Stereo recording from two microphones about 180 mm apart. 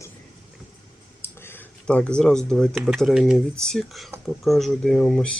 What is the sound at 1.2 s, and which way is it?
Speech, 10° left (ahead or behind).